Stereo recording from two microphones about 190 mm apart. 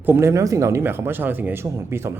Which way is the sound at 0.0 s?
10° right (ahead or behind).